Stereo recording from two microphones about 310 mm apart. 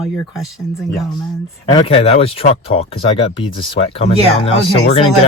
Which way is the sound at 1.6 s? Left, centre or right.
Centre.